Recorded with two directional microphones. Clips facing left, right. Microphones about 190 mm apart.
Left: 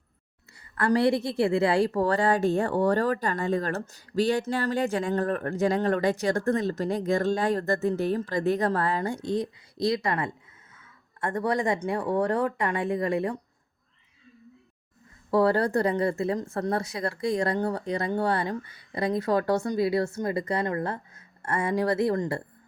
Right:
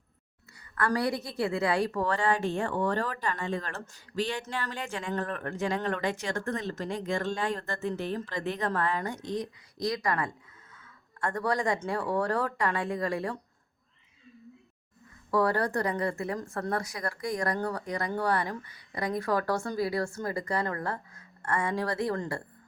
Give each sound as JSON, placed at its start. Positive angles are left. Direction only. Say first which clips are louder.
{"t": 0.8, "sound": "a woman's voice", "louder": "left 6 dB", "side_deg": 25}
{"t": 15.3, "sound": "speech", "louder": "left 4 dB", "side_deg": 25}